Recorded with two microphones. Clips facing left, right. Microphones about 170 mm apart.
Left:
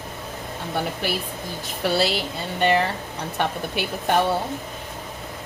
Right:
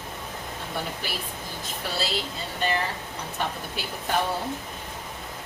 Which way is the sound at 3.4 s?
70° left (ahead or behind).